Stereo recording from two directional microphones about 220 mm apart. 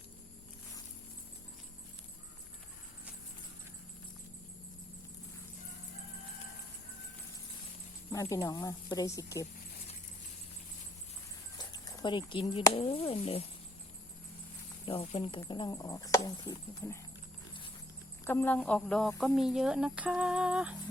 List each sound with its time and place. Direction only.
8.1 s speech: 15° left (ahead or behind)
11.5 s speech: 20° left (ahead or behind)
14.8 s speech: 25° left (ahead or behind)
18.3 s speech: 10° left (ahead or behind)